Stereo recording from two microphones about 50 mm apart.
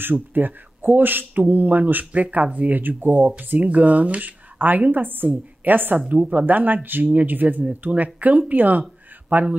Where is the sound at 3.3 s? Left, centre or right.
Right.